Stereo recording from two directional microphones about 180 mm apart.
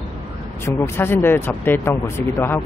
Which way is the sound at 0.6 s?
15° left (ahead or behind).